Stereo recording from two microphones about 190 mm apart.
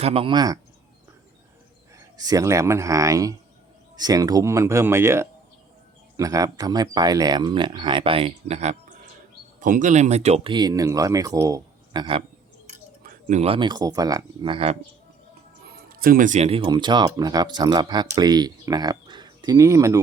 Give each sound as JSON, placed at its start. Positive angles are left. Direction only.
{"t": 0.0, "sound": "speech", "side_deg": -30}
{"t": 2.0, "sound": "speech", "side_deg": -20}
{"t": 13.0, "sound": "speech", "side_deg": -45}
{"t": 16.0, "sound": "speech", "side_deg": -50}